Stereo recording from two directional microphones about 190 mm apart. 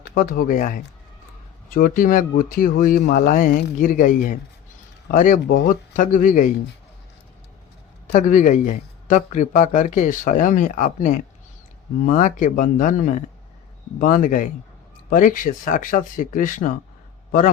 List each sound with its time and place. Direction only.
0.0 s speech: 55° left (ahead or behind)
8.0 s a man's voice: 45° left (ahead or behind)